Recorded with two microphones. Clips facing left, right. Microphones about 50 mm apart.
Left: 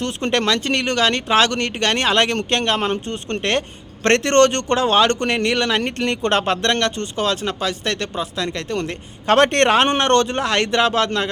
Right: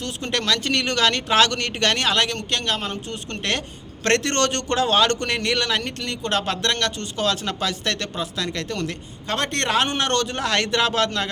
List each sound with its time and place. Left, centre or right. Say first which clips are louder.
0.0 s speech: left 6 dB; left; by 2.0 s centre
2.0 s speech: left 4 dB; left
5.8 s speech: left 7 dB; left
6.4 s speech: left 5 dB; left
9.2 s speech: left 10 dB; left
9.7 s speech: left 6 dB; left
10.4 s speech: left 3 dB; left